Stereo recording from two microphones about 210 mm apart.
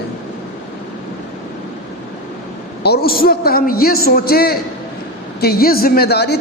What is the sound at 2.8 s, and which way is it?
A man's voice, 45° left (ahead or behind).